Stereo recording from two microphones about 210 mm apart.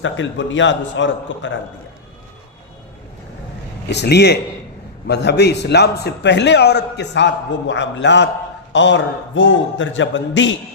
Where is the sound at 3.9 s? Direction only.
55° left (ahead or behind).